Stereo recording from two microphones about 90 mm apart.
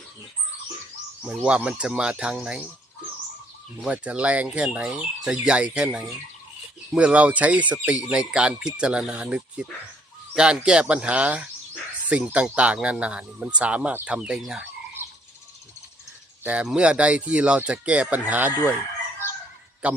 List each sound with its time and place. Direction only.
1.2 s speech: 10° right (ahead or behind)
3.8 s speech: 15° right (ahead or behind)
16.4 s speech: 15° right (ahead or behind)
19.8 s speech: 15° right (ahead or behind)